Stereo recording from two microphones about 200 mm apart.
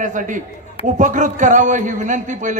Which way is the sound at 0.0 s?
40° right (ahead or behind).